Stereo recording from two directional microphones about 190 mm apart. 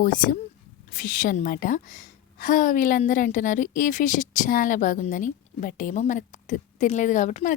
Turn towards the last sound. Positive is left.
turn(degrees=40)  # may be behind; listen again after turning